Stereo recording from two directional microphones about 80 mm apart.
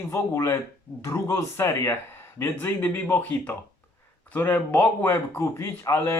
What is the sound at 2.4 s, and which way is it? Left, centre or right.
Speech, left.